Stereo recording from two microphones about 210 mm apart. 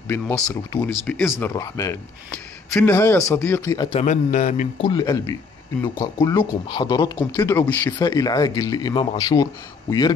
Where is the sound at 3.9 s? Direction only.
35° left (ahead or behind).